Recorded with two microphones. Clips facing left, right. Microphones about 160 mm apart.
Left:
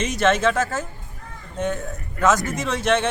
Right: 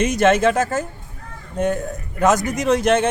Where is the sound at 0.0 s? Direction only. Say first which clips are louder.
Right 4 dB; 45° right (ahead or behind).